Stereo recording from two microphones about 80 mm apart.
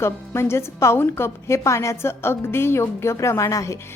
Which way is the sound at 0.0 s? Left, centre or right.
Left.